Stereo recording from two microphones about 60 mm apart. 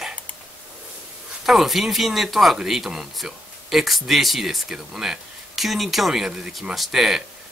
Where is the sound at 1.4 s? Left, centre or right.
Centre.